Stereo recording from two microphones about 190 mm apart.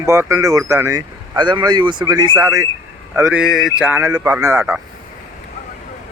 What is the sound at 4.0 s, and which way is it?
Speech, 15° right (ahead or behind).